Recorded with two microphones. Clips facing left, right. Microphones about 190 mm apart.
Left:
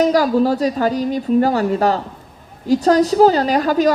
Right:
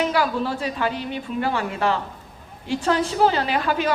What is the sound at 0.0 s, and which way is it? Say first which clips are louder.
A woman's voice: left 8 dB; 40° left (ahead or behind).